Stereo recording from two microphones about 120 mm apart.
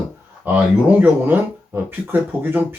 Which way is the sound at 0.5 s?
15° right (ahead or behind).